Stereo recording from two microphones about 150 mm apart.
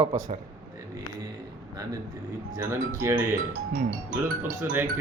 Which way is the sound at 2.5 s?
15° right (ahead or behind).